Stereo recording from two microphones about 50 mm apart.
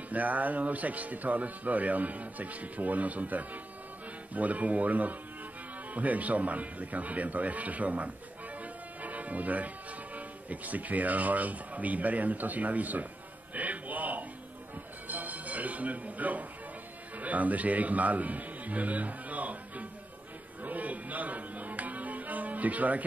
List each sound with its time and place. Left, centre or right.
0.1 s speech: right
9.0 s music: right
10.1 s speech: right
13.6 s music: right
17.2 s a man's voice: right
20.6 s music: right